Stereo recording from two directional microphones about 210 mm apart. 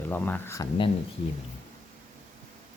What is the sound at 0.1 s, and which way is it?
Speech, 10° left (ahead or behind).